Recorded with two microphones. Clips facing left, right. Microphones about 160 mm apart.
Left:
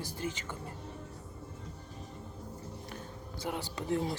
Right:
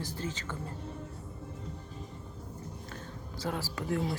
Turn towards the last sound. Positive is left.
turn(degrees=25)  # may be behind; listen again after turning